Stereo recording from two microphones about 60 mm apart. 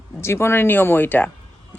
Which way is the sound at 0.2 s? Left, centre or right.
Left.